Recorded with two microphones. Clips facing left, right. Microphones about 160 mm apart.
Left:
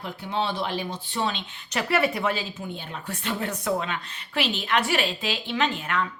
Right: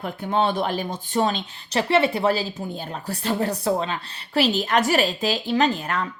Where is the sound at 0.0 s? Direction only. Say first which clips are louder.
Right 6 dB; 50° right (ahead or behind).